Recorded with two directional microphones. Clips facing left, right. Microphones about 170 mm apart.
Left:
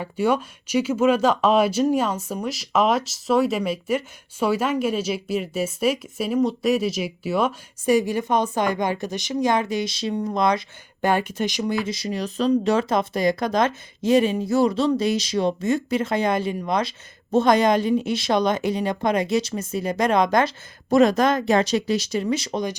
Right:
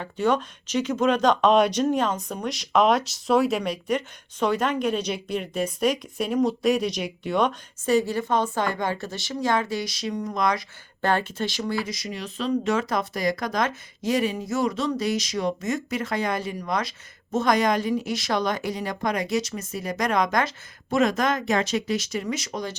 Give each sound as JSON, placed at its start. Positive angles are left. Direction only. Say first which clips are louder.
{"t": 0.0, "sound": "speech", "louder": "left 2 dB", "side_deg": 10}
{"t": 11.0, "sound": "speech", "louder": "left 3 dB", "side_deg": 15}